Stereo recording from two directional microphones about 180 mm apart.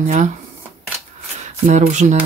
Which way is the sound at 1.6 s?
40° right (ahead or behind).